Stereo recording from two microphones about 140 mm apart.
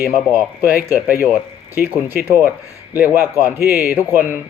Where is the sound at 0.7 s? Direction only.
90° left.